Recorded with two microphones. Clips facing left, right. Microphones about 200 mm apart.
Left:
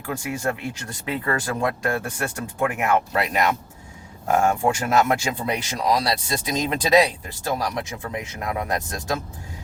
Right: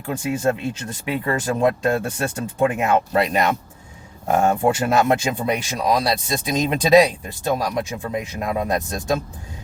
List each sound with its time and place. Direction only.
0.0 s speech: 25° right (ahead or behind)